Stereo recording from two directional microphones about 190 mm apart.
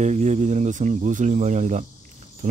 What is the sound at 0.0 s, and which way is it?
Speech, 40° right (ahead or behind).